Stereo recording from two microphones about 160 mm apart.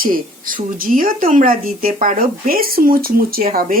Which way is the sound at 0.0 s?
60° right (ahead or behind).